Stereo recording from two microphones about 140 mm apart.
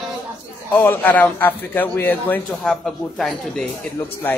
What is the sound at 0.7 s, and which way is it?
A man's voice, 15° left (ahead or behind).